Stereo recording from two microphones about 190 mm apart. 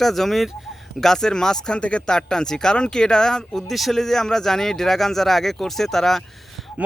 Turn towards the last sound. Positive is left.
turn(degrees=0)  # may be behind; listen again after turning